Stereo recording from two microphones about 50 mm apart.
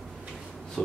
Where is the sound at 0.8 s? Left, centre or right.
Centre.